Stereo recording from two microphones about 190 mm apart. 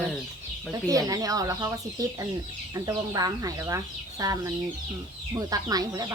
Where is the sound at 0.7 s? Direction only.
20° right (ahead or behind).